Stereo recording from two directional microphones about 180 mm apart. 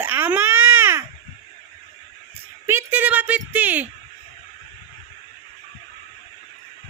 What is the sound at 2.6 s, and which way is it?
Speech, 10° right (ahead or behind).